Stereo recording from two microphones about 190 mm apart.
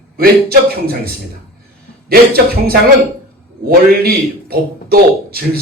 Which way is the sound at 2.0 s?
55° right (ahead or behind).